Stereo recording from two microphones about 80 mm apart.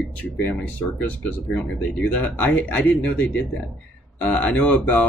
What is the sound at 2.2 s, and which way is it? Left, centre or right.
Speech, centre.